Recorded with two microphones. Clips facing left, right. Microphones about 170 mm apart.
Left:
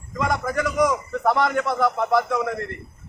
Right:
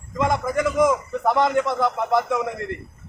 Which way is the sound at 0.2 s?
20° right (ahead or behind).